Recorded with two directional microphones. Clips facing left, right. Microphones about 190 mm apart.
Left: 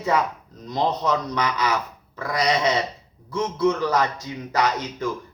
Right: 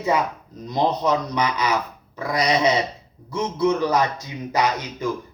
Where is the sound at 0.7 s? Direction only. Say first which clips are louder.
Right 2 dB; 15° right (ahead or behind).